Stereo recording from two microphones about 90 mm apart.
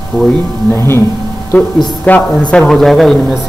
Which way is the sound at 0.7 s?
30° left (ahead or behind).